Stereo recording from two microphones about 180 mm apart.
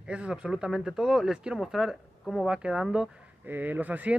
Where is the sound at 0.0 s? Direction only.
5° right (ahead or behind).